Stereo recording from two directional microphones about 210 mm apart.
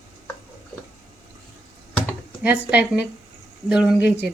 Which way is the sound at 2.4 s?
10° right (ahead or behind).